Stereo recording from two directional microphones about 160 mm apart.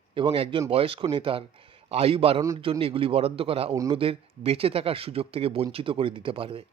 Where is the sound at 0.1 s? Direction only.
30° right (ahead or behind).